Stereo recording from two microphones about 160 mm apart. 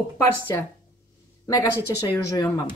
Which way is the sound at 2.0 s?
25° left (ahead or behind).